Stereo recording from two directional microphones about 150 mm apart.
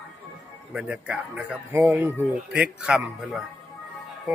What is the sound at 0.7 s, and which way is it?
Speech, 5° right (ahead or behind).